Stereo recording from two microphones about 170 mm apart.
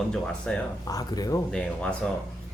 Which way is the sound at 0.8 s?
20° left (ahead or behind).